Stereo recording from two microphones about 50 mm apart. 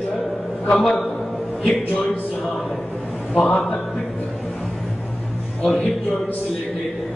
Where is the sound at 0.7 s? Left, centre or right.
Centre.